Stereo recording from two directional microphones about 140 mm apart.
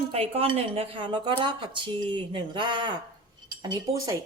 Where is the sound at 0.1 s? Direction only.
45° right (ahead or behind).